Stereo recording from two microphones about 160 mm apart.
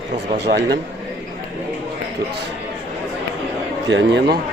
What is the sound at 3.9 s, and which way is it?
Speech, 85° right.